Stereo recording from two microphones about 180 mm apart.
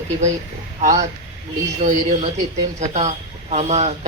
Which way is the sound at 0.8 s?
40° right (ahead or behind).